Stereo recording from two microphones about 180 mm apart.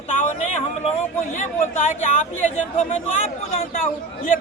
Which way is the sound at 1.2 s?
45° left (ahead or behind).